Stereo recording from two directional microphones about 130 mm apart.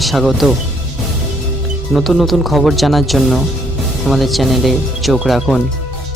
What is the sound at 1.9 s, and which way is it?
Speech, centre (ahead or behind).